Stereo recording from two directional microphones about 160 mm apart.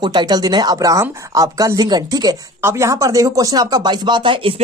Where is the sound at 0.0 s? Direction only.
25° right (ahead or behind).